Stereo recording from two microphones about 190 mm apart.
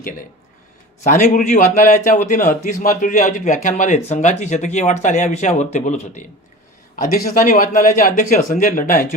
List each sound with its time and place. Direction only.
1.0 s a man's voice: 40° left (ahead or behind)
7.3 s speech: 50° left (ahead or behind)